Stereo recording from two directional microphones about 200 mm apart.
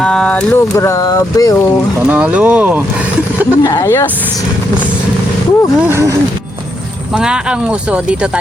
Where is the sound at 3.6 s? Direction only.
15° left (ahead or behind).